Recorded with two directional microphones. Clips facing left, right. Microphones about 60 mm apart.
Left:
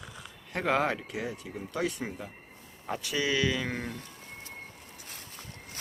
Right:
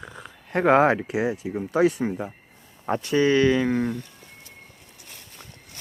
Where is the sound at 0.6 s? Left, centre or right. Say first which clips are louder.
Right 10 dB; right.